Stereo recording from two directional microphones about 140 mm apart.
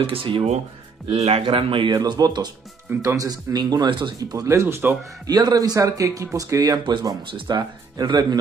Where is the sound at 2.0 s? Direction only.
25° right (ahead or behind).